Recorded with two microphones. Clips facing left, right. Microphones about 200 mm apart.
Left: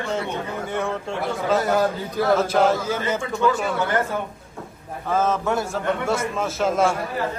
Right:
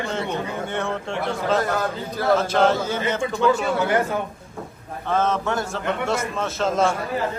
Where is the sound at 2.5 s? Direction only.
5° left (ahead or behind).